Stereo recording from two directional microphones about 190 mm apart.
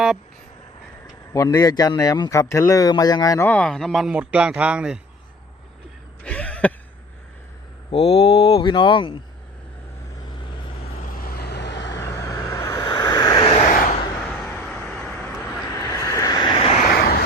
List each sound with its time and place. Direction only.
1.3 s speech: 20° left (ahead or behind); by 4.9 s 5° right (ahead or behind)
6.2 s a sound: 5° left (ahead or behind)
7.9 s speech: 30° left (ahead or behind)
11.1 s vehicle: 50° left (ahead or behind); by 12.0 s 70° left (ahead or behind)
12.0 s vehicle: 15° left (ahead or behind); by 13.7 s 35° left (ahead or behind)
14.5 s vehicle: 10° left (ahead or behind)
15.4 s vehicle: 15° left (ahead or behind)
16.8 s vehicle: 55° left (ahead or behind)